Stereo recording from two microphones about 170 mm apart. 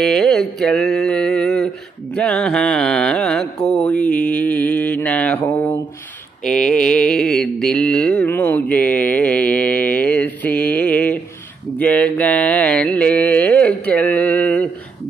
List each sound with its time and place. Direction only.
0.0 s mantra: centre (ahead or behind)
2.1 s music: 5° left (ahead or behind)
3.6 s mantra: 5° left (ahead or behind)
5.4 s a sound: 25° left (ahead or behind)
6.4 s mantra: 5° left (ahead or behind)